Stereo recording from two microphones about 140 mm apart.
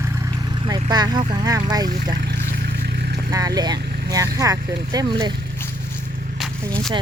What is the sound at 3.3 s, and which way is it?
Speech, 25° right (ahead or behind).